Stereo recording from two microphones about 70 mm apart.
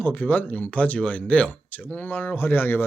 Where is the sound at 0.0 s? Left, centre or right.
Left.